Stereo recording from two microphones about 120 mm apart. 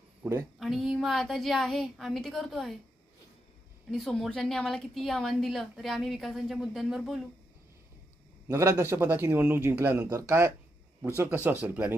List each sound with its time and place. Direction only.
0.2 s speech: 20° right (ahead or behind)
0.6 s a woman's voice: centre (ahead or behind)
3.9 s a woman's voice: centre (ahead or behind)
8.4 s speech: 20° right (ahead or behind)